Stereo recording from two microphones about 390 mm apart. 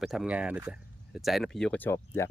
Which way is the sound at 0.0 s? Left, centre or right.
Centre.